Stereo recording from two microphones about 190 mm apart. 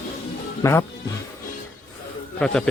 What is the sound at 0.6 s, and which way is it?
Speech, 15° left (ahead or behind).